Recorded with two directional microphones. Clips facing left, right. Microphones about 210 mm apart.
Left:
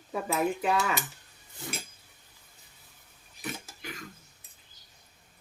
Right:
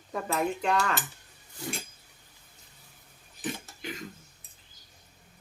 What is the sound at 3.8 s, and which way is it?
Cutlery, 20° right (ahead or behind).